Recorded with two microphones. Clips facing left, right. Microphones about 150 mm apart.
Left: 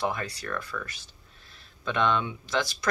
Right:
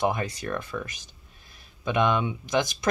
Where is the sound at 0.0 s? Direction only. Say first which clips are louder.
Right 4 dB; 20° right (ahead or behind).